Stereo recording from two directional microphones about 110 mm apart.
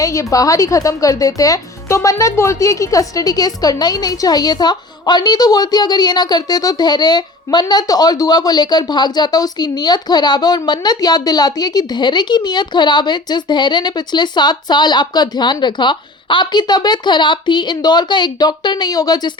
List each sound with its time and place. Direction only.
0.0 s speech: 30° left (ahead or behind)